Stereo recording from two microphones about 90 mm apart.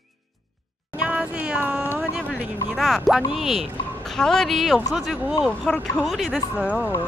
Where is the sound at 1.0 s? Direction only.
15° right (ahead or behind).